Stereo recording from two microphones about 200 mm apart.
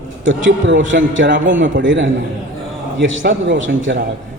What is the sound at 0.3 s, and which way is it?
A man's voice, 70° right (ahead or behind).